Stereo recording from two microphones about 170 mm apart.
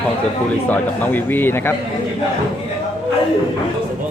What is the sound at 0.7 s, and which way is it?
Speech, 10° left (ahead or behind).